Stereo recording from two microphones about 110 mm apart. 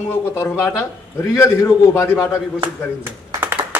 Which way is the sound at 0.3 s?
25° left (ahead or behind).